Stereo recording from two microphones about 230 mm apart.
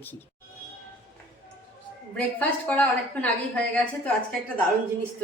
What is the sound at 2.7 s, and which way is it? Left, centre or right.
Speech, centre.